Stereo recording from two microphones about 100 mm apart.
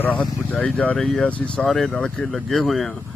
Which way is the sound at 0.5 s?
10° left (ahead or behind).